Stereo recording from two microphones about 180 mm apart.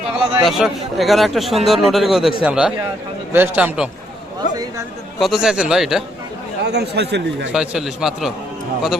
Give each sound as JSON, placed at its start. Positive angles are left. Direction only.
{"t": 0.4, "sound": "a man's voice", "side_deg": 0}
{"t": 4.4, "sound": "a sound", "side_deg": 45}
{"t": 5.2, "sound": "a man's voice", "side_deg": 0}
{"t": 6.6, "sound": "speech", "side_deg": -70}
{"t": 7.5, "sound": "a man's voice", "side_deg": -5}